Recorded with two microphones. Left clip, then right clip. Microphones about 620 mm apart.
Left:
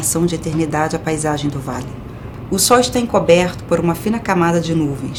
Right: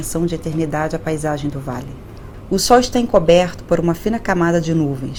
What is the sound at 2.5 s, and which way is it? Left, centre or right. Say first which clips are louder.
Speech: even; right.